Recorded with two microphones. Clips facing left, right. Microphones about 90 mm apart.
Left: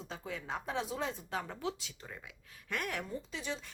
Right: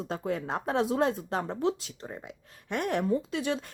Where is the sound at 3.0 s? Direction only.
70° right (ahead or behind).